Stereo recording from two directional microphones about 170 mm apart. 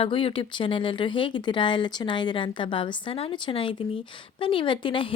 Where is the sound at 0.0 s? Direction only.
30° left (ahead or behind).